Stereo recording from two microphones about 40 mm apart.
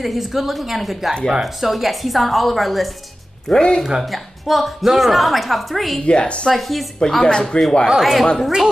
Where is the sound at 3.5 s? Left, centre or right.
Centre.